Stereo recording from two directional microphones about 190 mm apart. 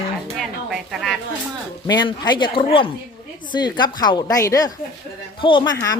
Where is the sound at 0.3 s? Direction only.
Centre (ahead or behind).